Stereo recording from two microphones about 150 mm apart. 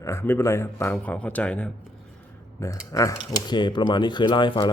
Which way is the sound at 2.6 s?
20° left (ahead or behind).